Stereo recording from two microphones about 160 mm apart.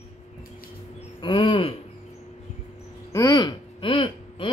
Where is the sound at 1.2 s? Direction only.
30° left (ahead or behind).